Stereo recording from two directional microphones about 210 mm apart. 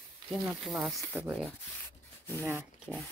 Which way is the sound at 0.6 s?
Centre (ahead or behind).